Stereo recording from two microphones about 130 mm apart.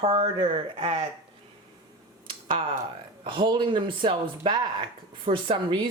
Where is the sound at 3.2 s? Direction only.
40° right (ahead or behind).